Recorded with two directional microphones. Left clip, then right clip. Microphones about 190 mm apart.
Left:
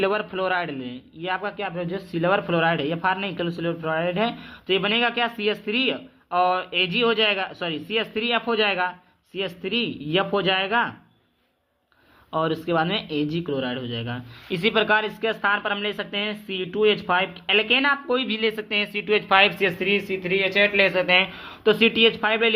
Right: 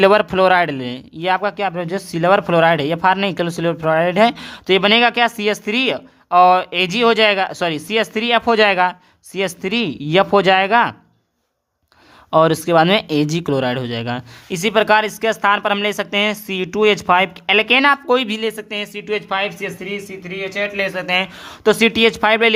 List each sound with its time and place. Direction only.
0.0 s speech: 50° right (ahead or behind)
12.3 s speech: 50° right (ahead or behind)
14.5 s speech: 35° right (ahead or behind)
18.3 s speech: 30° right (ahead or behind)
19.4 s speech: centre (ahead or behind); by 21.2 s 20° right (ahead or behind)
21.4 s speech: 45° right (ahead or behind)